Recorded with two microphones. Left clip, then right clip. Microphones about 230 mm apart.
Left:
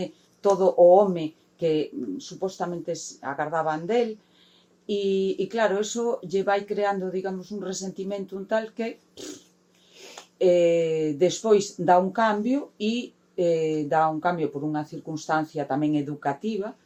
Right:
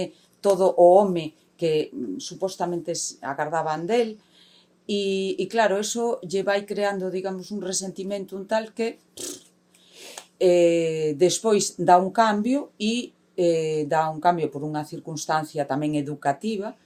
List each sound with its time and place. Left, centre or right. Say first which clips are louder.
0.0 s speech: right 1 dB; right
10.3 s speech: right 1 dB; right